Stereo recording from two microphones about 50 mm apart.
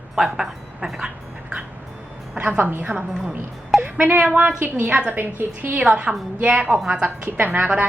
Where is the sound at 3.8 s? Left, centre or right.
Right.